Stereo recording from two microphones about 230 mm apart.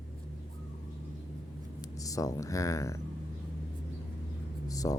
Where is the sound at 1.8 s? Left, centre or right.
Centre.